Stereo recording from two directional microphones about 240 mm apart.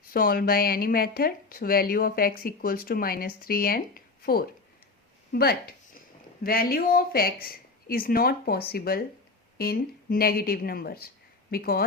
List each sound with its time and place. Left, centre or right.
0.1 s speech: left
5.3 s a sound: left
6.4 s speech: left